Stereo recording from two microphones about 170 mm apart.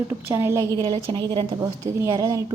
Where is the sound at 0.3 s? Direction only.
15° right (ahead or behind).